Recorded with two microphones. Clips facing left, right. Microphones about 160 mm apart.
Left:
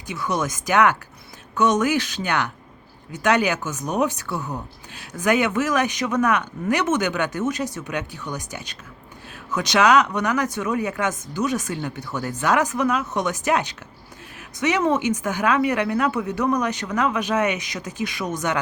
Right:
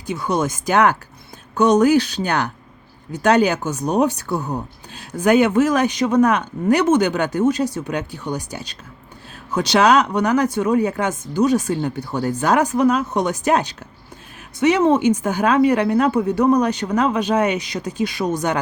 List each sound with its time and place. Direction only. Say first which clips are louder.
0.1 s speech: right 4 dB; 30° right (ahead or behind)